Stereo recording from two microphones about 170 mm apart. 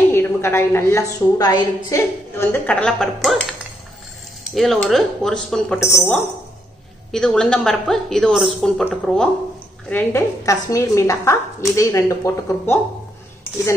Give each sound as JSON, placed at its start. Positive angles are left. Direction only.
{"t": 0.1, "sound": "a woman's voice", "side_deg": 15}
{"t": 4.5, "sound": "a woman's voice", "side_deg": 0}